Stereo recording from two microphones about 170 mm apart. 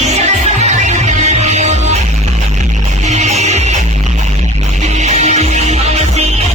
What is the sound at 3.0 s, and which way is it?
Music, 45° right (ahead or behind).